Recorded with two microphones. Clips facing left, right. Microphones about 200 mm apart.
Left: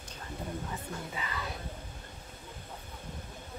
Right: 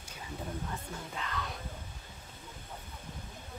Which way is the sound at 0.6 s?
5° left (ahead or behind).